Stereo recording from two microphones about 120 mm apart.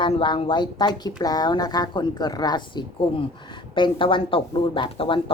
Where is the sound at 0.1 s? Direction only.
50° left (ahead or behind).